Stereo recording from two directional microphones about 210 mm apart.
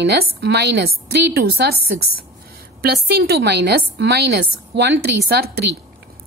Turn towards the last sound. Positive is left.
turn(degrees=-50)  # may be behind; listen again after turning